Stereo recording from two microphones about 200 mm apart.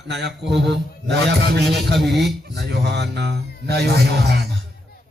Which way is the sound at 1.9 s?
Centre (ahead or behind).